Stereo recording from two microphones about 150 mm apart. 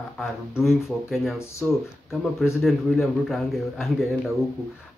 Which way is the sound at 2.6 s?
Centre (ahead or behind).